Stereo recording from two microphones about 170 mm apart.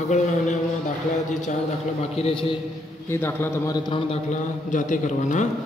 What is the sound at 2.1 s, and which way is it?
Speech, 35° left (ahead or behind).